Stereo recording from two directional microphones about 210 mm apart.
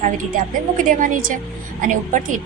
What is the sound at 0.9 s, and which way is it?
Speech, 40° right (ahead or behind).